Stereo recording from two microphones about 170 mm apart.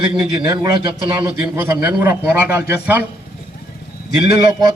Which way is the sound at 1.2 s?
15° right (ahead or behind).